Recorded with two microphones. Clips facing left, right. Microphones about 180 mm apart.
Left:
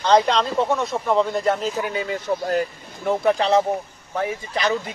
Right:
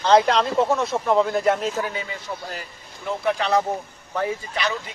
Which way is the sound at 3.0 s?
40° left (ahead or behind).